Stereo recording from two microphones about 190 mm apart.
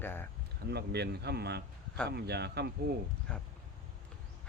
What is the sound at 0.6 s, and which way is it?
Speech, 60° right (ahead or behind).